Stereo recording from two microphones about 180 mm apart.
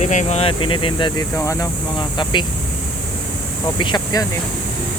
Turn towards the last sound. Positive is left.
turn(degrees=25)  # may be behind; listen again after turning